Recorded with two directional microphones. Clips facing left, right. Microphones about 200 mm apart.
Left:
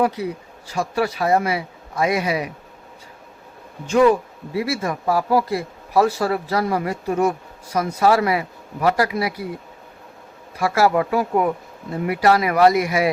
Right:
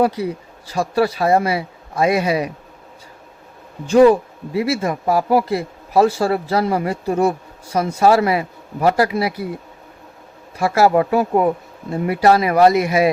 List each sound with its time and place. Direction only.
0.7 s speech: 35° right (ahead or behind)
3.8 s speech: 35° right (ahead or behind)
10.6 s speech: 25° right (ahead or behind)